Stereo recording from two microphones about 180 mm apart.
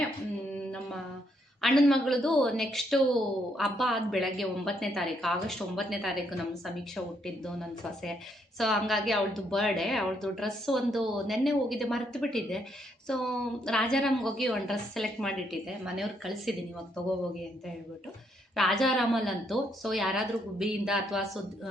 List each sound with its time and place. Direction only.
1.6 s a woman's voice: centre (ahead or behind)
18.5 s a woman's voice: centre (ahead or behind)